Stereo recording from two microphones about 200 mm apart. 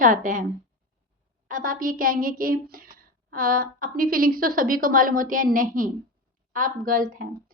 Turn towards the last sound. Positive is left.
turn(degrees=-45)  # may be behind; listen again after turning